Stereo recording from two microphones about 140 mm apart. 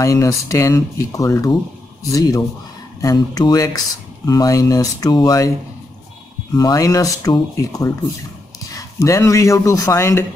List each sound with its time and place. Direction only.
0.0 s speech: 25° left (ahead or behind)
6.5 s speech: 25° left (ahead or behind)